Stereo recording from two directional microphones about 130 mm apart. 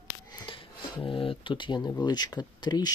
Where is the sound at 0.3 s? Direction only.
40° left (ahead or behind).